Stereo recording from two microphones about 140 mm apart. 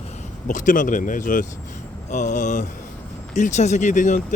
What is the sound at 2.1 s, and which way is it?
Speech, 60° left (ahead or behind).